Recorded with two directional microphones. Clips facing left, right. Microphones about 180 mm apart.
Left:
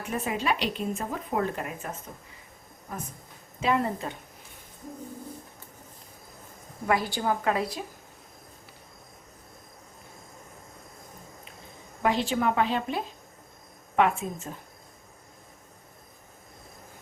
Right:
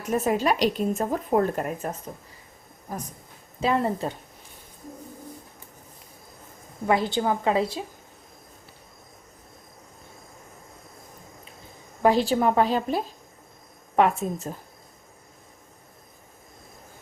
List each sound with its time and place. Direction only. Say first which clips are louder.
0.0 s a woman's voice: right 6 dB; 40° right (ahead or behind)
3.6 s a woman's voice: right 3 dB; 35° right (ahead or behind)
6.8 s a woman's voice: right 3 dB; 25° right (ahead or behind)
12.0 s a woman's voice: right 5 dB; 35° right (ahead or behind)